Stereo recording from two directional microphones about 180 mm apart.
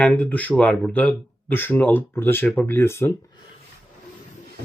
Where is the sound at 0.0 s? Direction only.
10° left (ahead or behind).